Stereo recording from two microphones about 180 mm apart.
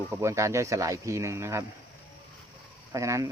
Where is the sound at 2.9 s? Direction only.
20° right (ahead or behind).